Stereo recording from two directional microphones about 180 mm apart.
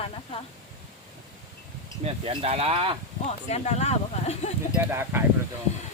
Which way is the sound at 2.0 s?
35° right (ahead or behind).